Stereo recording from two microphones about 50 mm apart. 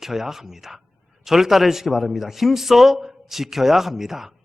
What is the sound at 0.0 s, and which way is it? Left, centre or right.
A man's voice, centre.